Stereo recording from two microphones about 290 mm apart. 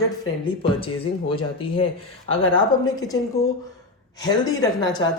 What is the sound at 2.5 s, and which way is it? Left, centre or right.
Speech, centre.